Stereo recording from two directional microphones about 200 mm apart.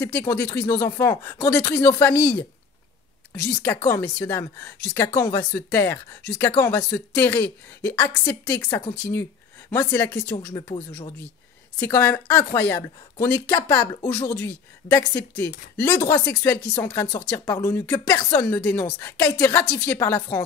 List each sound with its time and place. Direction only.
0.0 s a woman's voice: 15° left (ahead or behind)
3.6 s a woman's voice: 10° left (ahead or behind)